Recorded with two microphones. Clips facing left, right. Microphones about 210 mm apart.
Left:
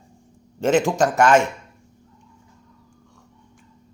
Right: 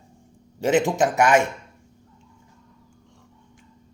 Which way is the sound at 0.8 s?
20° right (ahead or behind).